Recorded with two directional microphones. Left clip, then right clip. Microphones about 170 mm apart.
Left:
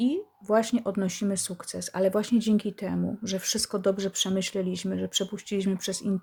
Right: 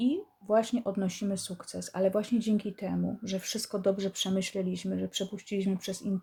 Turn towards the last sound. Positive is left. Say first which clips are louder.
# left 4 dB
turn(degrees=25)  # may be behind; listen again after turning